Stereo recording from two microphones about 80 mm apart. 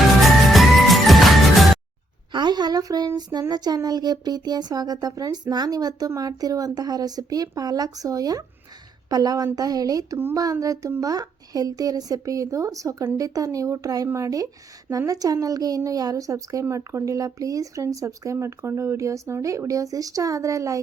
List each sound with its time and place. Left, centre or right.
0.2 s music: centre
2.3 s a sound: right
3.2 s a child's voice: right